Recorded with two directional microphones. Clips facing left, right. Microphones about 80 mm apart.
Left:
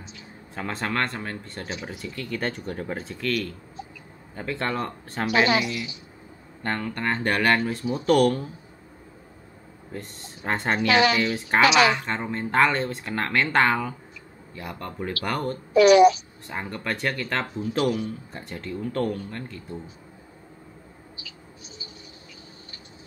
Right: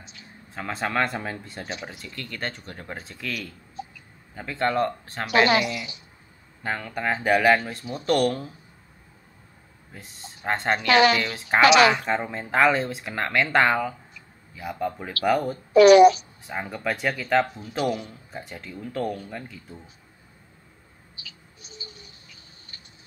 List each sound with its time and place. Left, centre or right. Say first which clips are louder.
0.6 s speech: right 1 dB; centre
9.9 s speech: left 6 dB; centre
15.7 s a woman's voice: right 2 dB; right
16.4 s speech: right 2 dB; centre
21.2 s bird: right 1 dB; right